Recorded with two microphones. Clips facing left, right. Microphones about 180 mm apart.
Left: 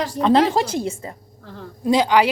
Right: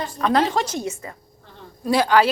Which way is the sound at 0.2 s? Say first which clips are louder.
Left 4 dB; 25° left (ahead or behind).